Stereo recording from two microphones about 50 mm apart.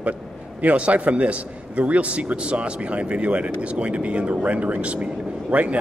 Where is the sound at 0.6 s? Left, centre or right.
Right.